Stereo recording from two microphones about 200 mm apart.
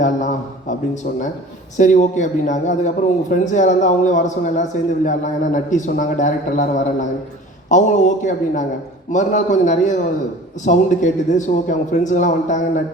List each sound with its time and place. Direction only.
0.0 s a sound: 40° left (ahead or behind)
1.7 s a man's voice: 40° left (ahead or behind)
7.7 s a man's voice: 40° left (ahead or behind)